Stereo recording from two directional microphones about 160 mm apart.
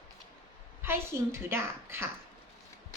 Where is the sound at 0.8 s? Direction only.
15° right (ahead or behind).